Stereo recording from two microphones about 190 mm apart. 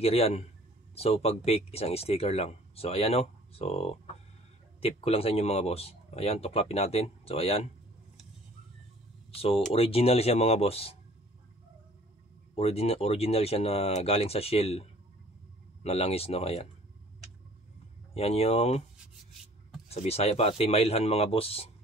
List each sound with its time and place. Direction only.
0.0 s speech: 30° left (ahead or behind)
9.3 s speech: 30° left (ahead or behind)
12.5 s speech: 30° left (ahead or behind)
18.1 s speech: 35° left (ahead or behind)
19.9 s speech: 30° left (ahead or behind)